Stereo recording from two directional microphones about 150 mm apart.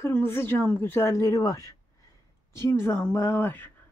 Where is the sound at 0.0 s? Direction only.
15° left (ahead or behind).